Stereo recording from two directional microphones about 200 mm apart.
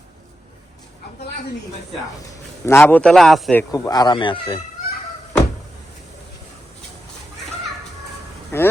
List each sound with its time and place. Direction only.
2.3 s a man's voice: 10° left (ahead or behind)
3.6 s speech: 20° left (ahead or behind)
8.5 s a sound: 10° left (ahead or behind)